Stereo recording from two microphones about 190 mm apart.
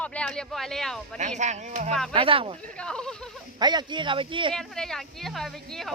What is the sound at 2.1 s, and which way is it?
Speech, 30° right (ahead or behind).